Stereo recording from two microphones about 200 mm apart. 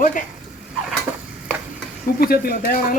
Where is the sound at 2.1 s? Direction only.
50° left (ahead or behind).